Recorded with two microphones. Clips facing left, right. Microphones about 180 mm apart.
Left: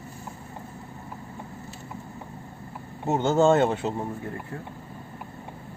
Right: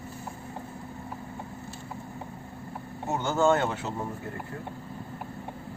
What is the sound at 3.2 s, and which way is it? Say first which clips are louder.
Speech: left 4 dB; 20° left (ahead or behind).